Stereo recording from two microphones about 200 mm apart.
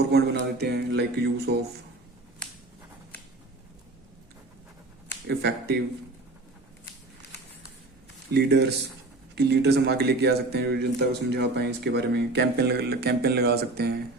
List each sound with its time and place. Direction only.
0.1 s speech: 55° right (ahead or behind)
5.3 s speech: 55° right (ahead or behind)
8.3 s speech: 55° right (ahead or behind)